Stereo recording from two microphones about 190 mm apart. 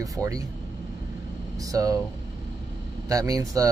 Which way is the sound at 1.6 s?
20° right (ahead or behind).